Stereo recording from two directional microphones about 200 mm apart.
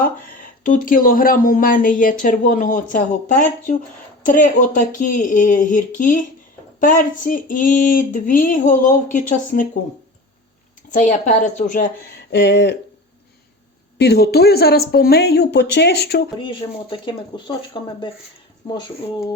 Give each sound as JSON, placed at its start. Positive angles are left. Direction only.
{"t": 0.0, "sound": "speech", "side_deg": 45}
{"t": 10.9, "sound": "a woman's voice", "side_deg": 40}
{"t": 12.3, "sound": "speech", "side_deg": 60}
{"t": 14.0, "sound": "speech", "side_deg": 55}
{"t": 16.4, "sound": "speech", "side_deg": 25}